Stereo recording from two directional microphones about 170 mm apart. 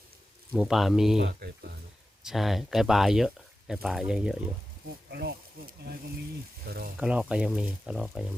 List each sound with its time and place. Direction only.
0.5 s speech: 5° right (ahead or behind)
1.2 s speech: 70° right (ahead or behind)
2.2 s speech: centre (ahead or behind)
5.1 s speech: 65° right (ahead or behind)
7.0 s speech: 5° right (ahead or behind)